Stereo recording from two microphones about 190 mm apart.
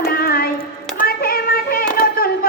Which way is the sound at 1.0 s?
50° left (ahead or behind).